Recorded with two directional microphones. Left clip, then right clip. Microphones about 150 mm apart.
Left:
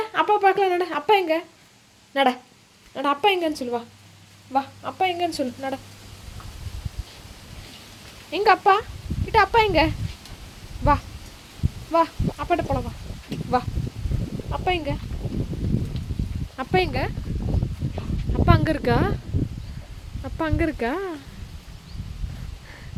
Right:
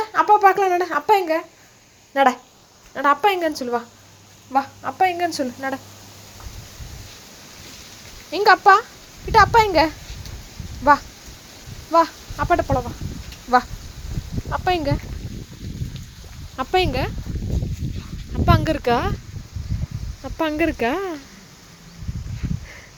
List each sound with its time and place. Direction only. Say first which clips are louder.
0.0 s a sound: right 5 dB; 15° left (ahead or behind)
0.3 s a woman's voice: right 3 dB; 10° left (ahead or behind)
8.3 s a woman's voice: right 4 dB; 10° right (ahead or behind)
11.9 s speech: right 4 dB; 5° right (ahead or behind)
14.5 s speech: right 4 dB; 20° right (ahead or behind)
16.6 s speech: right 3 dB; 5° right (ahead or behind)
18.4 s a woman's voice: right 3 dB; 5° right (ahead or behind)
20.2 s speech: right 4 dB; 5° right (ahead or behind)